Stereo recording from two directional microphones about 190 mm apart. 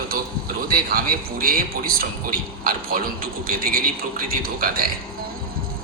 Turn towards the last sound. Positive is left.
turn(degrees=-50)  # may be behind; listen again after turning